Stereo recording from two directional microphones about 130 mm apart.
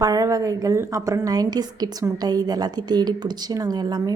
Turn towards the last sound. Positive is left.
turn(degrees=-30)  # may be behind; listen again after turning